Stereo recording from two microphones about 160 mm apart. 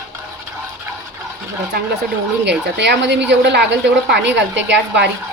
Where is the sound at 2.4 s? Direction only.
90° right.